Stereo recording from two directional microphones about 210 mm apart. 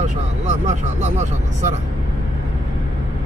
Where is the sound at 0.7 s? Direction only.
35° right (ahead or behind).